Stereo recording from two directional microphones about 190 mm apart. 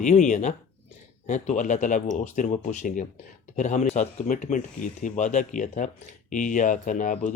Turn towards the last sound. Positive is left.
turn(degrees=40)  # may be behind; listen again after turning